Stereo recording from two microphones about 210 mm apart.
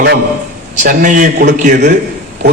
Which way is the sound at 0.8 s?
35° right (ahead or behind).